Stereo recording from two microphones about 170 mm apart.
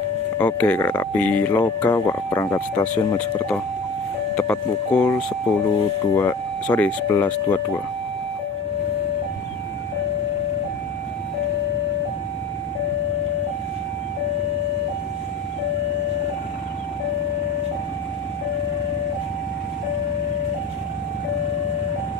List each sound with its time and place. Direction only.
0.4 s speech: 10° left (ahead or behind)